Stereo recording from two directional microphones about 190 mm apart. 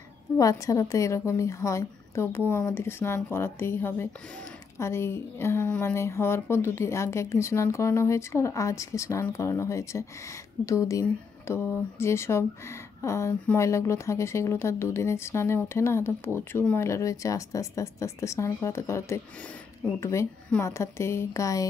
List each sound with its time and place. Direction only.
0.4 s speech: 15° left (ahead or behind)